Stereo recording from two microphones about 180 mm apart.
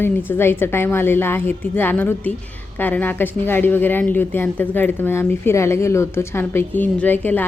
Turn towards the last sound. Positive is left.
turn(degrees=10)  # may be behind; listen again after turning